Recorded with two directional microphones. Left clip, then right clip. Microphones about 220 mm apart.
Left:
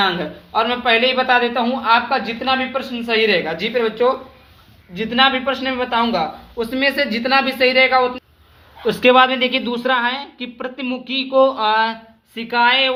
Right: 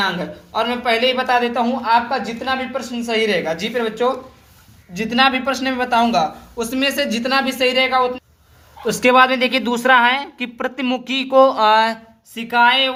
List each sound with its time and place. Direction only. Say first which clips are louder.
0.0 s speech: left 2 dB; centre (ahead or behind)
4.9 s a woman's voice: even; 25° right (ahead or behind)
12.3 s speech: right 1 dB; 10° right (ahead or behind)